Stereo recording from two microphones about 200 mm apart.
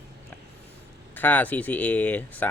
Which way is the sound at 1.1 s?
10° left (ahead or behind).